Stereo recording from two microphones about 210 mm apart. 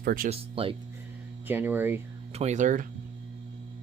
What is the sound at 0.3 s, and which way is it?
Speech, 25° right (ahead or behind).